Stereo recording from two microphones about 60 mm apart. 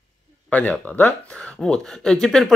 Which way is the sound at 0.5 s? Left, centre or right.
Left.